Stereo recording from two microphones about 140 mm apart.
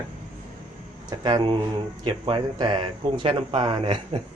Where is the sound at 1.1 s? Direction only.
30° right (ahead or behind).